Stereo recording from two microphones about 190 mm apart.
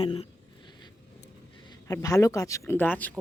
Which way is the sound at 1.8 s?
15° left (ahead or behind).